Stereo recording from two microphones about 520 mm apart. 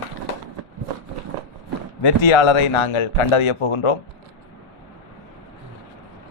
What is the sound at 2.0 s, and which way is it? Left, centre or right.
A man's voice, left.